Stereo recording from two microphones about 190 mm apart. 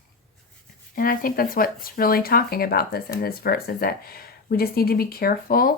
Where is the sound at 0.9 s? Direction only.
50° left (ahead or behind).